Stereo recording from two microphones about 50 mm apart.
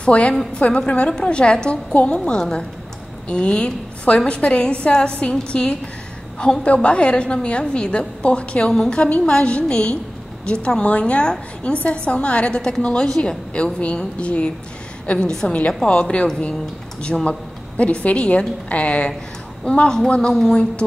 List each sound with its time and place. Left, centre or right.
0.0 s a woman's voice: left